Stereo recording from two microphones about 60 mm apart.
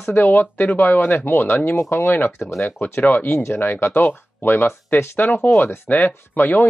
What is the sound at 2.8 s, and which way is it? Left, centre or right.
Speech, left.